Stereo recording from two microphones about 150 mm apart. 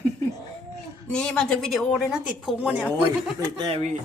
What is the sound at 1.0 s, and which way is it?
A woman's voice, 5° left (ahead or behind).